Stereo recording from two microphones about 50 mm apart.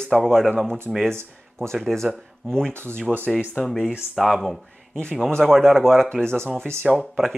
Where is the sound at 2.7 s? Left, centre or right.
Right.